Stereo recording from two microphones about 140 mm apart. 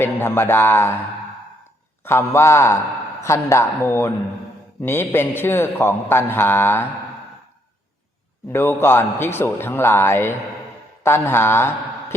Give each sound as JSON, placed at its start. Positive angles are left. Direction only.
{"t": 0.0, "sound": "a man's voice", "side_deg": 15}
{"t": 2.0, "sound": "a woman's voice", "side_deg": 15}
{"t": 8.5, "sound": "a man's voice", "side_deg": 15}